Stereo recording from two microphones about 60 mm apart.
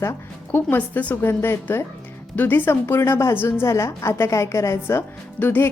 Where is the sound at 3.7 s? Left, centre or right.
Left.